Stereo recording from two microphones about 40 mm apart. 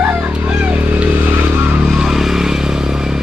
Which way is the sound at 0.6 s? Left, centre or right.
Right.